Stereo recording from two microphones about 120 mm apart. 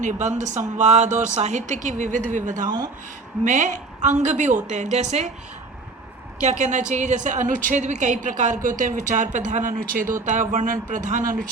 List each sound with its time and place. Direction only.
0.0 s a woman's voice: 85° right
4.7 s a woman's voice: 75° right (ahead or behind)
6.4 s a woman's voice: 85° right